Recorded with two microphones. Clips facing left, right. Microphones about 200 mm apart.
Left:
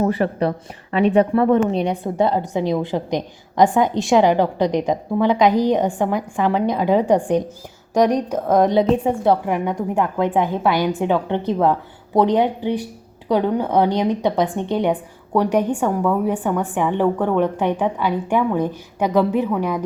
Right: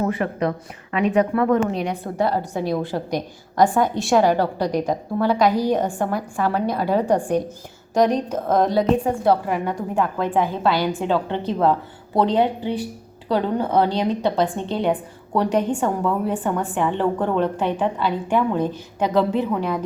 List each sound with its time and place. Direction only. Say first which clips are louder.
0.0 s a woman's voice: left 3 dB; 35° left (ahead or behind); by 19.8 s 10° left (ahead or behind)